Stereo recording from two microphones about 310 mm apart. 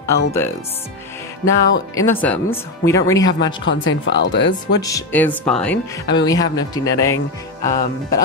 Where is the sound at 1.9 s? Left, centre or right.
Centre.